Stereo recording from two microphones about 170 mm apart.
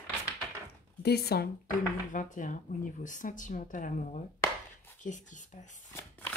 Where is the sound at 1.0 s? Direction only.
70° left (ahead or behind).